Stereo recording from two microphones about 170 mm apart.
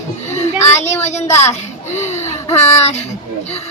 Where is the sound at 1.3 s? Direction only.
15° left (ahead or behind).